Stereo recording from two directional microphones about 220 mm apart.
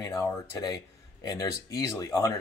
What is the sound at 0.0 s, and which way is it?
Speech, 15° left (ahead or behind).